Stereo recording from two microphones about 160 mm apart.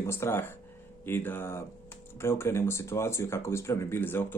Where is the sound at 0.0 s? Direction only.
15° left (ahead or behind).